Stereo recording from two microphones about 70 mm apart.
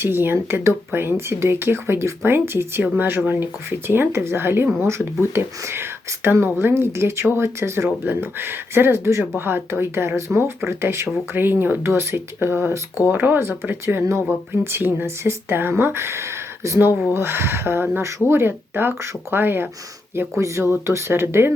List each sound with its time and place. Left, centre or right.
0.0 s speech: right
20.1 s speech: right